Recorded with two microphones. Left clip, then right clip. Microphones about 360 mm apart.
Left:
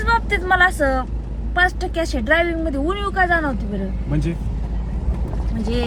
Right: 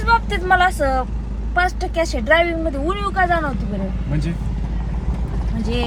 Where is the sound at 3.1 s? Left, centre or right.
Right.